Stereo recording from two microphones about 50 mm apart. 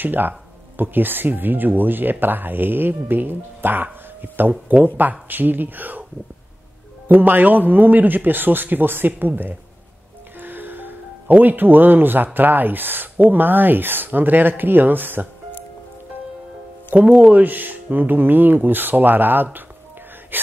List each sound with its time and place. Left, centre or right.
0.0 s speech: right
7.1 s speech: right
10.4 s music: right
12.4 s speech: right
16.9 s speech: right